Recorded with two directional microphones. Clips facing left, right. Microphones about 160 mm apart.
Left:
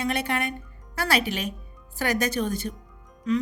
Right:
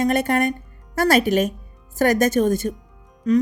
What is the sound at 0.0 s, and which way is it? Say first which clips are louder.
Speech: right 8 dB; 45° right (ahead or behind).